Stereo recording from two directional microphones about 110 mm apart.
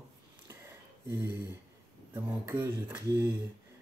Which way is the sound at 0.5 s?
20° right (ahead or behind).